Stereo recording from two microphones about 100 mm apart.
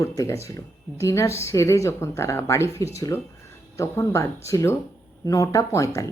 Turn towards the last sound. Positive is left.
turn(degrees=30)  # may be behind; listen again after turning